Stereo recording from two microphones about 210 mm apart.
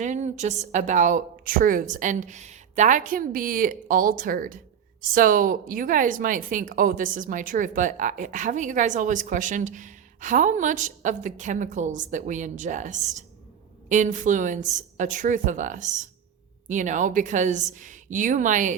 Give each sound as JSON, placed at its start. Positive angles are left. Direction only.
{"t": 0.0, "sound": "a woman's voice", "side_deg": -35}